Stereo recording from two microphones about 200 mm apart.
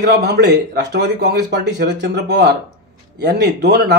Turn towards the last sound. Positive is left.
turn(degrees=-55)  # may be behind; listen again after turning